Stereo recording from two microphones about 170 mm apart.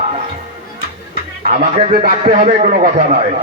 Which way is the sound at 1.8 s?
35° right (ahead or behind).